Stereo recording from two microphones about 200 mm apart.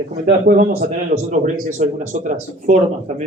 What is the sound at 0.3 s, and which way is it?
A man's voice, 45° right (ahead or behind).